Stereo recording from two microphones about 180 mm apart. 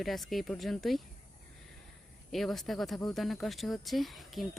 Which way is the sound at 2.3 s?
Centre (ahead or behind).